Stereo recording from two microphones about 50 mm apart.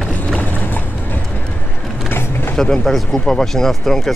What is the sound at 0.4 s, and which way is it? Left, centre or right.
Boat, left.